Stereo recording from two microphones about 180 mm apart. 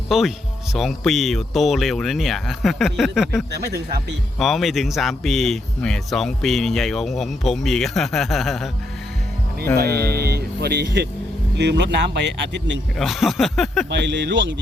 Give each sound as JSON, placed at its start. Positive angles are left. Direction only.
{"t": 0.1, "sound": "speech", "side_deg": 0}
{"t": 9.7, "sound": "speech", "side_deg": -60}
{"t": 13.0, "sound": "speech", "side_deg": 0}
{"t": 13.9, "sound": "speech", "side_deg": -80}